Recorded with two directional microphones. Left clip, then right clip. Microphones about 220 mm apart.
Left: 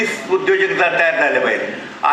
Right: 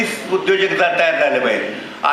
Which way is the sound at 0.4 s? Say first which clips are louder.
Even; 50° right (ahead or behind).